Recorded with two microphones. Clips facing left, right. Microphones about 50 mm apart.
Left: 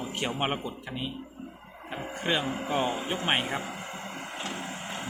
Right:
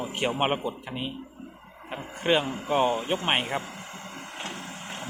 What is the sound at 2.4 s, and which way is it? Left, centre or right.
Speech, centre.